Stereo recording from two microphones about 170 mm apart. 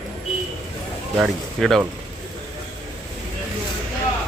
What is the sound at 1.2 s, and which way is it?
Speech, centre (ahead or behind).